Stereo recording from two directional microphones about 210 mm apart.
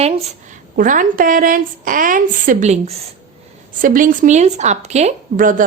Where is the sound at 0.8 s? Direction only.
40° right (ahead or behind).